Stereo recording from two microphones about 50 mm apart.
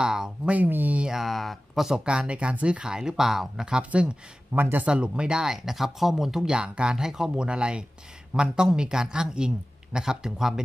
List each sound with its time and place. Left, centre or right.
0.0 s speech: centre
0.7 s speech: right
1.1 s speech: centre
1.9 s speech: centre
4.5 s speech: right
4.9 s speech: centre
6.5 s speech: centre